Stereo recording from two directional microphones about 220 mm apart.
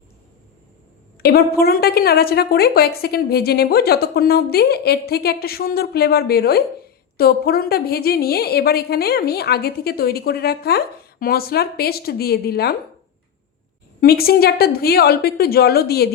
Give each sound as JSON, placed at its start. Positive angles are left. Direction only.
{"t": 1.2, "sound": "a woman's voice", "side_deg": 45}
{"t": 14.0, "sound": "a woman's voice", "side_deg": 45}